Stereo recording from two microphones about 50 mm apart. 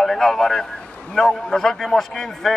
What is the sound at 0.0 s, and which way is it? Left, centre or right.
A man's voice, centre.